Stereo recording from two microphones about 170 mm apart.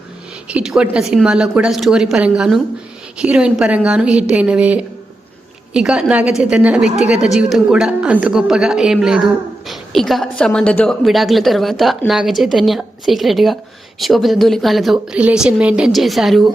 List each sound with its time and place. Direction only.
0.4 s a woman's voice: 5° right (ahead or behind)